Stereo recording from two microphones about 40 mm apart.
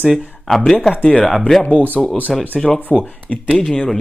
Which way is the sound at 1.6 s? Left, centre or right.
Left.